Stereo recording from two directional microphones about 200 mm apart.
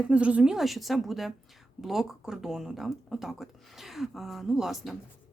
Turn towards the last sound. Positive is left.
turn(degrees=0)  # may be behind; listen again after turning